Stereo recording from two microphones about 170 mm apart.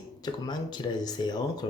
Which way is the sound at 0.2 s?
25° left (ahead or behind).